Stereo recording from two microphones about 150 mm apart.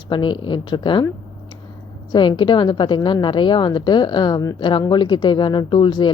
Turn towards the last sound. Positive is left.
turn(degrees=30)  # may be behind; listen again after turning